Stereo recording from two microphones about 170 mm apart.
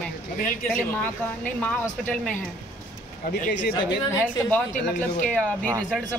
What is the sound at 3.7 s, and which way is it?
Speech, 25° left (ahead or behind).